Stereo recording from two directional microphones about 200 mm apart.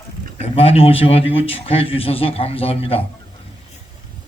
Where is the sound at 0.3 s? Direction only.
30° left (ahead or behind).